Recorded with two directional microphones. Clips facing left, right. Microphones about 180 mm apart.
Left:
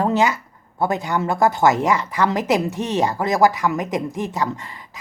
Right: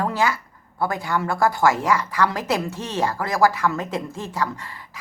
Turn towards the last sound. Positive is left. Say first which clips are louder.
# left 2 dB
turn(degrees=20)  # may be behind; listen again after turning